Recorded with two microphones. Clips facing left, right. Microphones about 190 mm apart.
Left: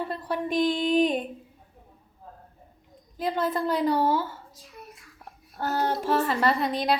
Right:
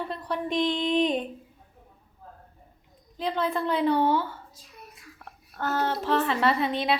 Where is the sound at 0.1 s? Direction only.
5° left (ahead or behind).